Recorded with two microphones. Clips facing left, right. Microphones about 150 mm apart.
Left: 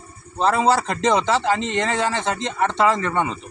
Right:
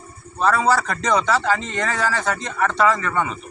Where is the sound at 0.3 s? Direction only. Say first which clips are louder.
Left 1 dB; 25° left (ahead or behind).